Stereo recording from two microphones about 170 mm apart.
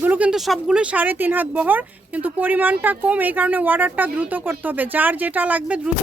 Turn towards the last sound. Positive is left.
turn(degrees=-5)  # may be behind; listen again after turning